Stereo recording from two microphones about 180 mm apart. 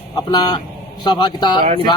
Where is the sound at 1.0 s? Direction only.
25° left (ahead or behind).